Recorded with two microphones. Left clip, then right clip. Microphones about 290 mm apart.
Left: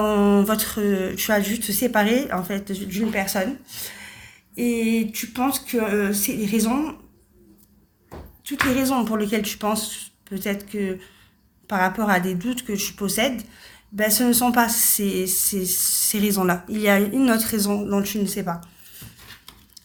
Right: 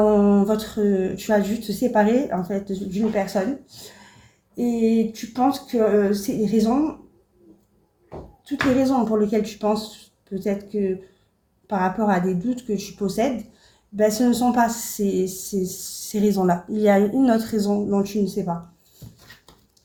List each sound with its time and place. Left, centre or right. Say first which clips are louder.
0.0 s humming: right 2 dB; left
0.9 s speech: even; left
8.4 s speech: right 1 dB; left
18.0 s speech: right 2 dB; left